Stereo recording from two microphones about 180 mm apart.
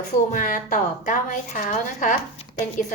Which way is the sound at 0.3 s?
45° left (ahead or behind).